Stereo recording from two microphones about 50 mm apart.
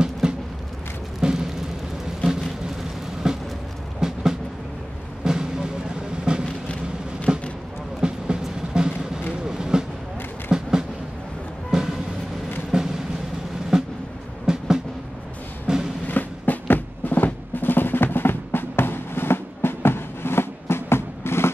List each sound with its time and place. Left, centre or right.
0.2 s a sound: centre
1.2 s music: centre
2.8 s vehicle: centre
4.0 s music: centre
6.4 s a sound: left
8.0 s music: centre
9.5 s vehicle: centre
10.5 s a sound: centre
11.7 s train: centre
12.7 s music: centre
16.1 s music: left